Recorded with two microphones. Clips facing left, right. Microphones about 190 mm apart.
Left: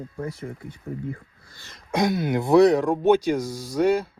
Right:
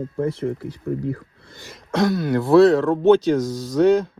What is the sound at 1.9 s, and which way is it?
Speech, 15° left (ahead or behind).